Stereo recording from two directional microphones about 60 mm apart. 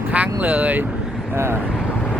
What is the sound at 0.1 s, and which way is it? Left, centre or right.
Vehicle, right.